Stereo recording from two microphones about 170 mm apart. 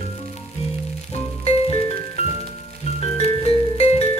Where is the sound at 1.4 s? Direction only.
35° left (ahead or behind).